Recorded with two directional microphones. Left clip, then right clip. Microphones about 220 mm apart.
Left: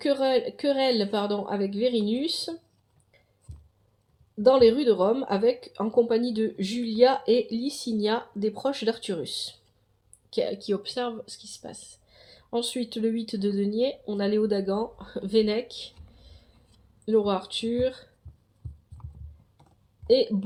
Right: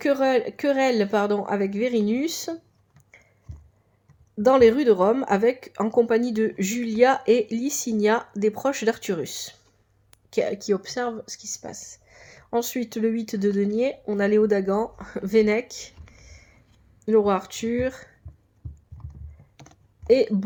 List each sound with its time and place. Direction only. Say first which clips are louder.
0.0 s speech: right 3 dB; 30° right (ahead or behind)
4.4 s speech: right 2 dB; 30° right (ahead or behind)
17.1 s speech: right 4 dB; 35° right (ahead or behind)
20.1 s speech: right 3 dB; 30° right (ahead or behind)